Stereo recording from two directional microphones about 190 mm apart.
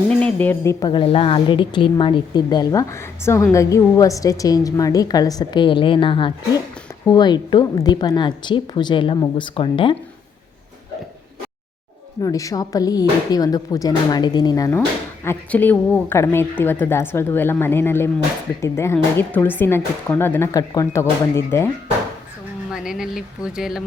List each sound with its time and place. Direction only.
0.1 s speech: 5° left (ahead or behind); by 9.9 s 25° left (ahead or behind)
12.2 s speech: 20° left (ahead or behind)
22.7 s speech: 5° right (ahead or behind)